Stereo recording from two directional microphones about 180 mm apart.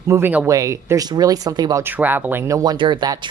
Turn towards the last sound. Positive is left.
turn(degrees=-25)  # may be behind; listen again after turning